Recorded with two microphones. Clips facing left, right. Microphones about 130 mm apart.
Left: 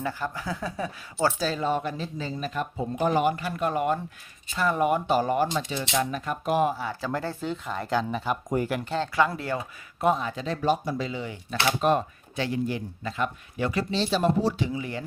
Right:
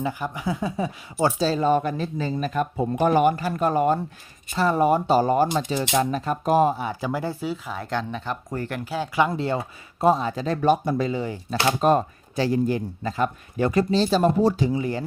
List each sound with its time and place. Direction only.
0.0 s speech: 15° right (ahead or behind)
1.5 s speech: 45° right (ahead or behind)
3.3 s speech: 40° right (ahead or behind)
6.7 s speech: 15° right (ahead or behind); by 8.7 s 15° left (ahead or behind)
8.7 s speech: 5° right (ahead or behind)
9.1 s speech: 20° right (ahead or behind)